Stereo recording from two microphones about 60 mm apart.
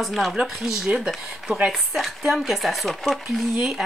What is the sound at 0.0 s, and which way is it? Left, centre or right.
Speech, centre.